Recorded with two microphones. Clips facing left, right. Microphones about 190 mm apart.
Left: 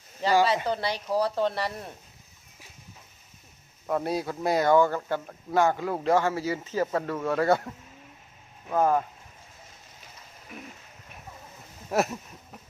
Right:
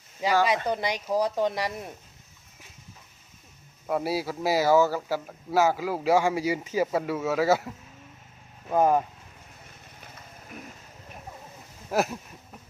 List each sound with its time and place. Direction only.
0.2 s speech: 10° right (ahead or behind)
3.8 s speech: 5° right (ahead or behind)
8.7 s speech: 15° right (ahead or behind)
11.9 s speech: centre (ahead or behind)